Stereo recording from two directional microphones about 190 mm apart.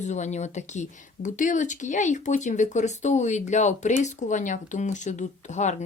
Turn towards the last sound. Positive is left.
turn(degrees=40)  # may be behind; listen again after turning